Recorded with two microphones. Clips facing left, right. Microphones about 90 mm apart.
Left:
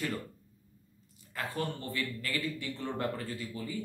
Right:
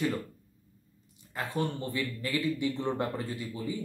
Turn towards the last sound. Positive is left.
turn(degrees=-20)  # may be behind; listen again after turning